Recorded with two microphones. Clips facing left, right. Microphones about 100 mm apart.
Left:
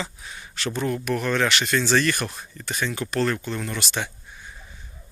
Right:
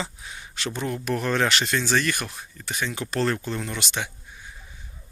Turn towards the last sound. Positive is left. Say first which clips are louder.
# left 1 dB
turn(degrees=-15)  # may be behind; listen again after turning